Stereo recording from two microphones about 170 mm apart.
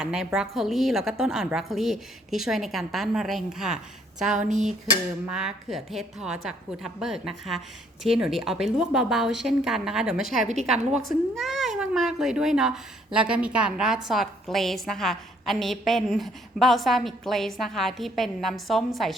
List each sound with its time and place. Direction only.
0.0 s a woman's voice: 5° right (ahead or behind)
4.4 s speech: 45° right (ahead or behind)
5.3 s a woman's voice: 5° right (ahead or behind)